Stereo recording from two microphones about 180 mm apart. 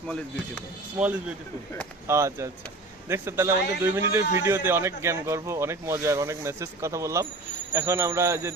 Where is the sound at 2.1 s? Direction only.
15° right (ahead or behind).